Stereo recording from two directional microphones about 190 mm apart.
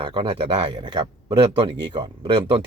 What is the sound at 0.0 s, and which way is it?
Speech, 25° right (ahead or behind).